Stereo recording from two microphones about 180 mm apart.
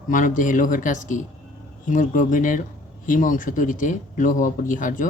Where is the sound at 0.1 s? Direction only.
45° left (ahead or behind).